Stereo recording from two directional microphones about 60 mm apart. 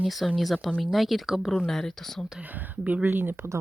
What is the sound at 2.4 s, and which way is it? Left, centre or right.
Speech, right.